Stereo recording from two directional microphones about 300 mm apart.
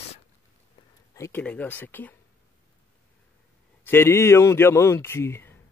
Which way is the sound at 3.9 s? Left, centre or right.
Centre.